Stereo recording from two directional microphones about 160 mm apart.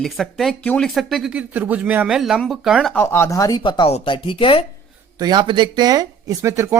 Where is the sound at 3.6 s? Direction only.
30° left (ahead or behind).